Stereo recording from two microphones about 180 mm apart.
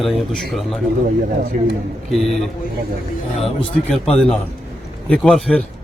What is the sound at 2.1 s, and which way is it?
Speech, centre (ahead or behind).